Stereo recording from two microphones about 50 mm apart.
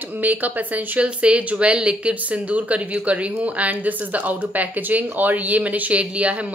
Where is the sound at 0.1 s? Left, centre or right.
Right.